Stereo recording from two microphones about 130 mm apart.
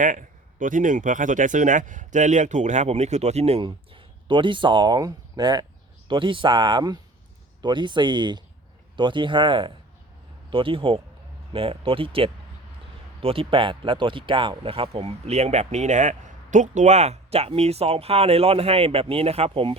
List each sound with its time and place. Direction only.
0.0 s speech: 85° right; by 3.6 s 55° right (ahead or behind)
3.6 s speech: 40° right (ahead or behind)